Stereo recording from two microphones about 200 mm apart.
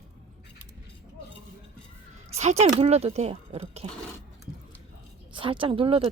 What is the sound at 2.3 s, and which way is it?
Speech, 35° right (ahead or behind).